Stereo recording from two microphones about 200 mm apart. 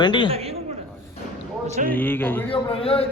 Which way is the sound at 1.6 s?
35° right (ahead or behind).